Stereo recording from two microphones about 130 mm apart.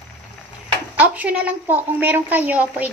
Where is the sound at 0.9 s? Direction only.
10° right (ahead or behind).